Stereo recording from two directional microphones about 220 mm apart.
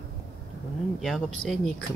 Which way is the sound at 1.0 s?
Centre (ahead or behind).